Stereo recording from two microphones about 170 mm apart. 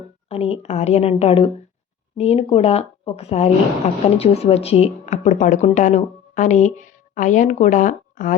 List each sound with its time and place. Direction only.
0.3 s a woman's voice: 35° left (ahead or behind)